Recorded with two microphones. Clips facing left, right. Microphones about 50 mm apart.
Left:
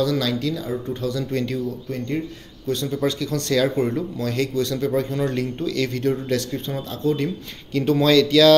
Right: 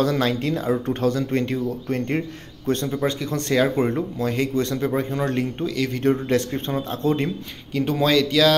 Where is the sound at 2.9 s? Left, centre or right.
Right.